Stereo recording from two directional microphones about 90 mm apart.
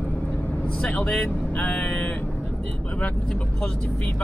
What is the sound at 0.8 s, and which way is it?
Speech, 15° left (ahead or behind).